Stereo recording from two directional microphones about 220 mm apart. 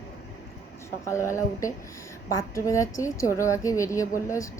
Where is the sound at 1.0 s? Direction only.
15° left (ahead or behind).